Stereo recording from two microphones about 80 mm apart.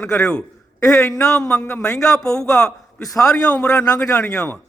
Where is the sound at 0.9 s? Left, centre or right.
Left.